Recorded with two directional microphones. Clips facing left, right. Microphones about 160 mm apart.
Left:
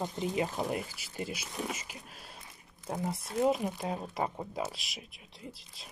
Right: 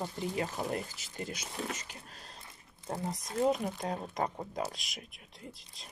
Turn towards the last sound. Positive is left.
turn(degrees=5)  # may be behind; listen again after turning